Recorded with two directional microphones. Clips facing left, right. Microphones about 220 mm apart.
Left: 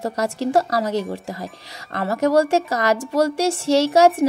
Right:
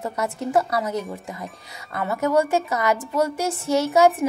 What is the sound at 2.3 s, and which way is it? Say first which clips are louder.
Speech: left 3 dB; 80° left.